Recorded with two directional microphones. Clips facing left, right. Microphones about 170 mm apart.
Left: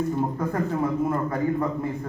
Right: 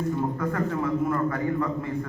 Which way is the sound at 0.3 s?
30° left (ahead or behind).